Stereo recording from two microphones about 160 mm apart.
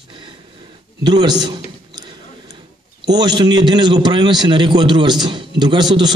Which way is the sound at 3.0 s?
25° right (ahead or behind).